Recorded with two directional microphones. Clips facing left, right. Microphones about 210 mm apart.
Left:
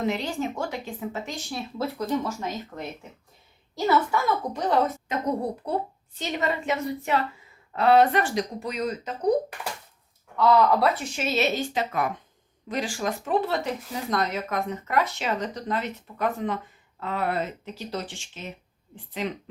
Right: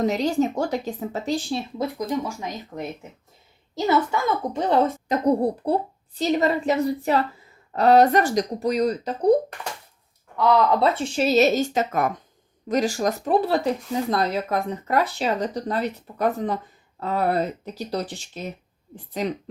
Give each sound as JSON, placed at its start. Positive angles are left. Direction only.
{"t": 0.0, "sound": "speech", "side_deg": -40}
{"t": 1.8, "sound": "speech", "side_deg": -15}
{"t": 3.8, "sound": "speech", "side_deg": -25}
{"t": 10.3, "sound": "speech", "side_deg": -15}